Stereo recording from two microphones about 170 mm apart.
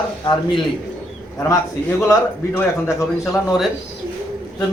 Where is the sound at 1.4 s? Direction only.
10° left (ahead or behind).